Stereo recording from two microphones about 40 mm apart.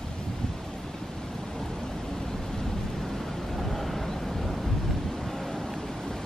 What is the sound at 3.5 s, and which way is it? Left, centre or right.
Vehicle, centre.